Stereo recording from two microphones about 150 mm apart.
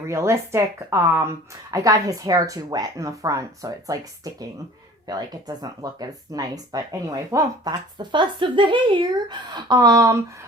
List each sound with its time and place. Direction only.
0.1 s speech: 20° right (ahead or behind)